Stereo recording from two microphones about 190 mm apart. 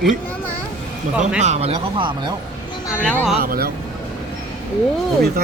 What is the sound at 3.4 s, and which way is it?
Speech, 55° right (ahead or behind).